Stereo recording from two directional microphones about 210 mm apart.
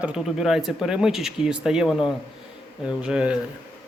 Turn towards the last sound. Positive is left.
turn(degrees=-5)  # may be behind; listen again after turning